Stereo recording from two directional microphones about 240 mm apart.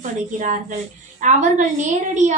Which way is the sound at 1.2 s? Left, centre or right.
Right.